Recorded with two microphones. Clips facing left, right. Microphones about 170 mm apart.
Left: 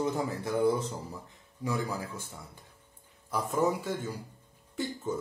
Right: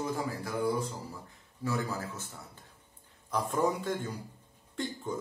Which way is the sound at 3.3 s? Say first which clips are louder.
Left 1 dB; 10° left (ahead or behind).